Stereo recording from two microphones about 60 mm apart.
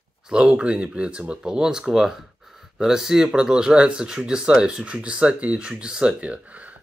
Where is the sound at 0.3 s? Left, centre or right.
Centre.